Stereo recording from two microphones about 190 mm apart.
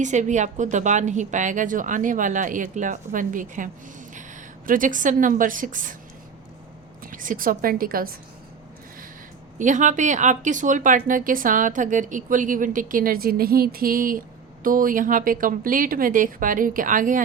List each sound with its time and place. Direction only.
0.0 s speech: 40° right (ahead or behind)
7.0 s speech: 45° right (ahead or behind)
9.6 s speech: 40° right (ahead or behind)